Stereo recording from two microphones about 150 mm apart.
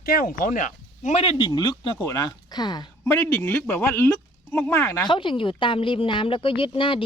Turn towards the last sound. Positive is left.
turn(degrees=35)  # may be behind; listen again after turning